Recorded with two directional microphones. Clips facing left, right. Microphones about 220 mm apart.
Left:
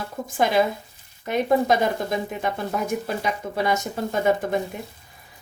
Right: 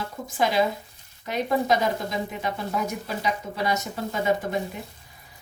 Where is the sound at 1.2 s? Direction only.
55° left (ahead or behind).